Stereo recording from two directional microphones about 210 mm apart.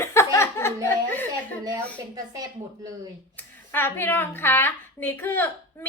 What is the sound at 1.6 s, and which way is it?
Speech, 15° right (ahead or behind).